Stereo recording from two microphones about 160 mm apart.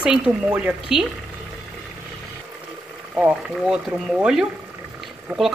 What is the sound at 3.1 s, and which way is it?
Speech, 5° right (ahead or behind).